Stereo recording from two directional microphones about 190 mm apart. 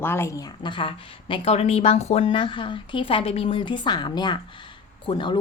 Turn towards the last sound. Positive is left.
turn(degrees=25)  # may be behind; listen again after turning